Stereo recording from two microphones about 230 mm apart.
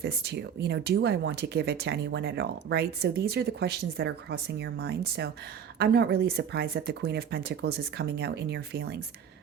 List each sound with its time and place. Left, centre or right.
0.0 s speech: right